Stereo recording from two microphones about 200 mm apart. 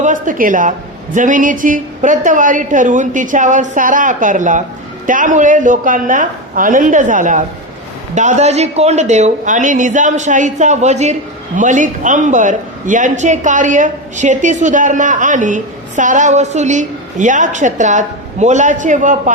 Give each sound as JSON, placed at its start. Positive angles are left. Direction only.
{"t": 0.0, "sound": "a woman's voice", "side_deg": -40}